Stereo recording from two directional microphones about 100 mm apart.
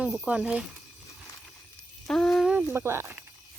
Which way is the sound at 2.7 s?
25° right (ahead or behind).